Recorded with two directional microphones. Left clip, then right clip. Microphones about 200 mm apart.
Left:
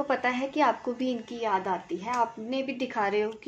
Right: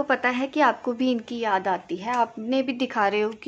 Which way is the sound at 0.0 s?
30° right (ahead or behind).